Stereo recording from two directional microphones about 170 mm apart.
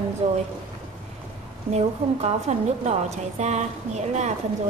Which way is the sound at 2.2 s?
40° right (ahead or behind).